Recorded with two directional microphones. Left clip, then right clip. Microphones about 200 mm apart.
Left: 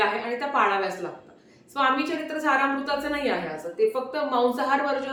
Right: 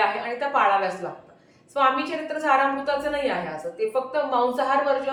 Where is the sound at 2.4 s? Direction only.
15° left (ahead or behind).